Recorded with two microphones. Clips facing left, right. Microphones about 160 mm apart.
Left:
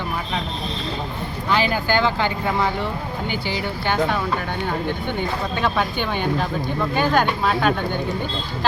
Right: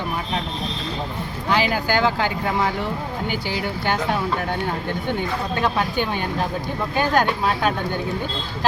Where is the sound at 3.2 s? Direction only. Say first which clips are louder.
Even; 45° right (ahead or behind).